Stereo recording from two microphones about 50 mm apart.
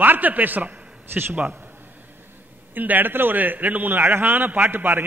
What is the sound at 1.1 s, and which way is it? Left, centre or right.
Speech, right.